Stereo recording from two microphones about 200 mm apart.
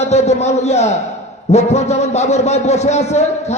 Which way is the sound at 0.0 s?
35° left (ahead or behind).